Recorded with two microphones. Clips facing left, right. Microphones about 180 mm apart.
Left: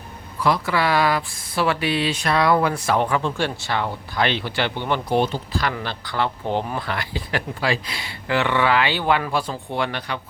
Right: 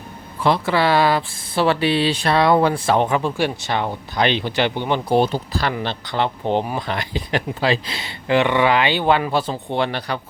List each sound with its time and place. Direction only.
0.3 s speech: 25° right (ahead or behind)
5.0 s speech: 35° right (ahead or behind)
5.7 s speech: 20° right (ahead or behind)